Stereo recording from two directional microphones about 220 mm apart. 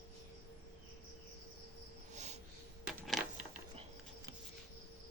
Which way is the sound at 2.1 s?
30° right (ahead or behind).